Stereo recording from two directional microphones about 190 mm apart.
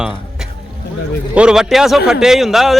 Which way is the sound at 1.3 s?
5° right (ahead or behind).